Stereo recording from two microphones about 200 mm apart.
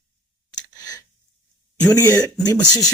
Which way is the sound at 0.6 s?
20° left (ahead or behind).